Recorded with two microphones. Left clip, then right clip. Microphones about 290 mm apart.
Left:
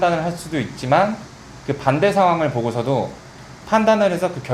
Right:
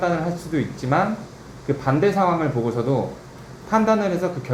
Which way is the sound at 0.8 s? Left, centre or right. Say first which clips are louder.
Left 6 dB; centre.